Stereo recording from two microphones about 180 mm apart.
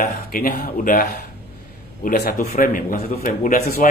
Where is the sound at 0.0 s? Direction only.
55° left (ahead or behind).